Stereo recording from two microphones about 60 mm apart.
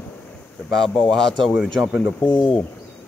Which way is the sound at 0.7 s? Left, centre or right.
Centre.